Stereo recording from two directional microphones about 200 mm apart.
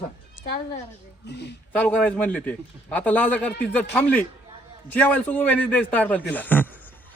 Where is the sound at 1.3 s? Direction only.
60° left (ahead or behind).